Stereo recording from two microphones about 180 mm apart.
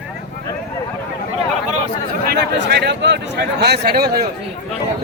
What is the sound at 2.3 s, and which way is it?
Speech, 65° right (ahead or behind).